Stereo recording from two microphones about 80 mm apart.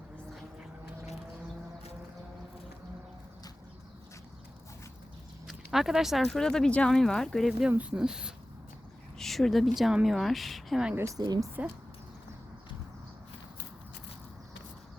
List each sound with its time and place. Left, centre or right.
5.5 s speech: centre
7.8 s speech: centre
9.1 s a woman's voice: centre
11.2 s a woman's voice: right
11.6 s speech: centre